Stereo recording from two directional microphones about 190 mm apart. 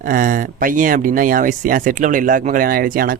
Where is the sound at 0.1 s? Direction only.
45° right (ahead or behind).